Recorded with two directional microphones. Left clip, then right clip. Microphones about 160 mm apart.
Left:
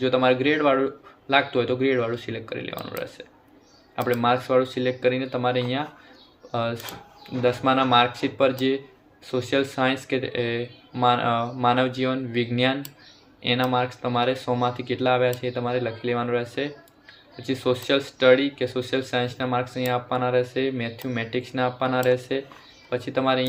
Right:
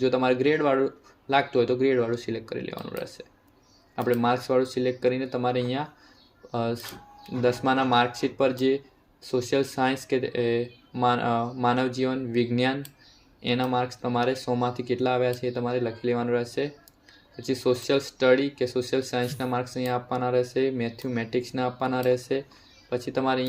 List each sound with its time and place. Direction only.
0.0 s speech: 45° right (ahead or behind)